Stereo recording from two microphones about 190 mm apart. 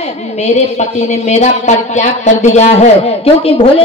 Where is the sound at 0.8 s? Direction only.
35° left (ahead or behind).